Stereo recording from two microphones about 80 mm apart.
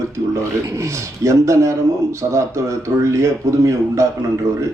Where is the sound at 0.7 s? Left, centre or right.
Right.